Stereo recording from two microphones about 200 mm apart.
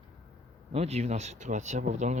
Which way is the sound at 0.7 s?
30° right (ahead or behind).